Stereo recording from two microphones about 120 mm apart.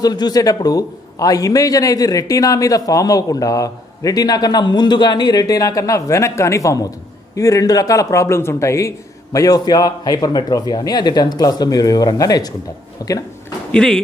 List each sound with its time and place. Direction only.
0.0 s a man's voice: 35° left (ahead or behind)
13.7 s speech: 5° left (ahead or behind)